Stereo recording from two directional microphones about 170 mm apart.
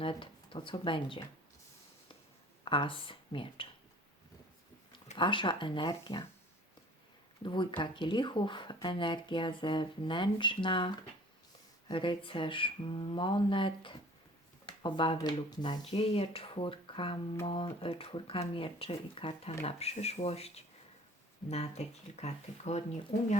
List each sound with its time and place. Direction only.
0.0 s speech: 30° left (ahead or behind)
2.6 s speech: 30° left (ahead or behind)
5.1 s speech: 30° left (ahead or behind)
7.4 s speech: 30° left (ahead or behind); by 23.3 s 50° left (ahead or behind)